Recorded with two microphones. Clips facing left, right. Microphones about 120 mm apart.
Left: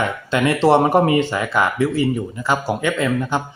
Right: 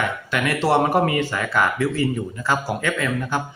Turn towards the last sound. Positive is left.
turn(degrees=20)  # may be behind; listen again after turning